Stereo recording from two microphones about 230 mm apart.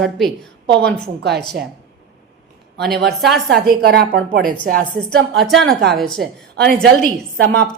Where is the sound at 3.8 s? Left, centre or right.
Right.